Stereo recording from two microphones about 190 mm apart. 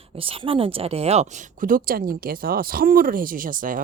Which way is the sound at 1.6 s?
50° right (ahead or behind).